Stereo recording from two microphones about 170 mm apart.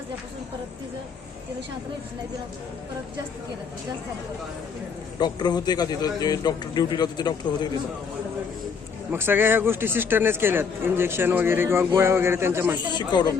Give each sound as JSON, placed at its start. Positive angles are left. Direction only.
{"t": 5.2, "sound": "speech", "side_deg": 25}
{"t": 9.1, "sound": "a man's voice", "side_deg": -10}
{"t": 12.9, "sound": "speech", "side_deg": 25}